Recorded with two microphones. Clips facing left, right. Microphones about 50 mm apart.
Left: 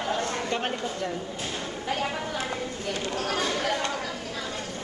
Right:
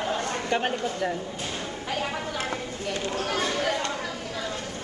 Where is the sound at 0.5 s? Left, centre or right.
Right.